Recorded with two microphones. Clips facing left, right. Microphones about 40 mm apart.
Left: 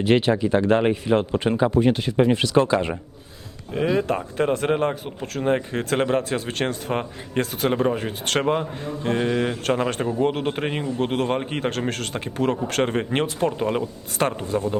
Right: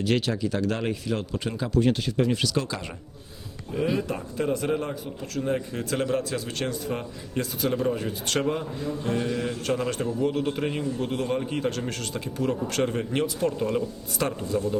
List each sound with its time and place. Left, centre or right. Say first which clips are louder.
0.0 s a man's voice: left 6 dB; left
3.9 s a man's voice: left 6 dB; left